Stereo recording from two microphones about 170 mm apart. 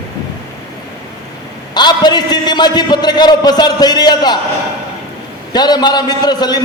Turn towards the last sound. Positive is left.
turn(degrees=25)  # may be behind; listen again after turning